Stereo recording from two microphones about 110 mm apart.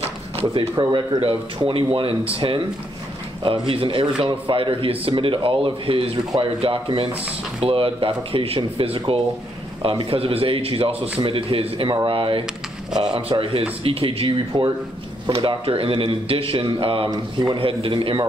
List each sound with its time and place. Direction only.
0.4 s a man's voice: 50° right (ahead or behind)
1.2 s a man's voice: 55° right (ahead or behind)
17.1 s speech: 35° right (ahead or behind)
17.6 s a man's voice: 55° right (ahead or behind)